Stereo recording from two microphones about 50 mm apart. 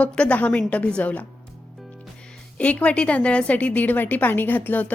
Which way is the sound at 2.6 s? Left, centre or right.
Left.